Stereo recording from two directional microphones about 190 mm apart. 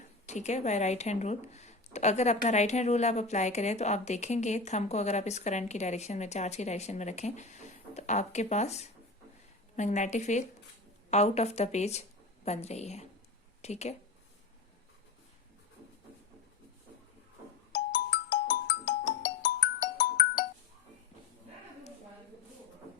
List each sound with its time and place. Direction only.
0.3 s speech: 40° left (ahead or behind)
17.7 s music: 70° left (ahead or behind)